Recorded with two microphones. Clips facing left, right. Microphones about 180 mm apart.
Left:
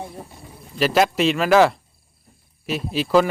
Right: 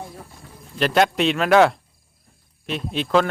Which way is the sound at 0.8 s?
5° left (ahead or behind).